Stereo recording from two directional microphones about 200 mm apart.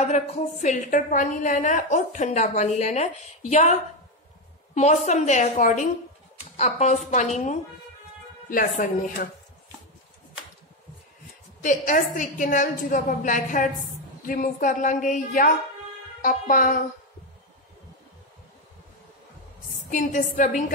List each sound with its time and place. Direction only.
0.0 s a woman's voice: 35° left (ahead or behind)
4.7 s a woman's voice: 35° left (ahead or behind)
11.6 s a woman's voice: 40° left (ahead or behind)
19.9 s a woman's voice: 40° left (ahead or behind)